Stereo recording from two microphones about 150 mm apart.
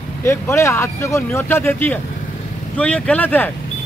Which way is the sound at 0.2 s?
15° left (ahead or behind).